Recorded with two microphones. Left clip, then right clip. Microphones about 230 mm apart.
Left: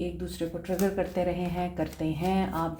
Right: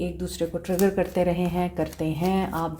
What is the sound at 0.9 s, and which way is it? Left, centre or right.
Speech, right.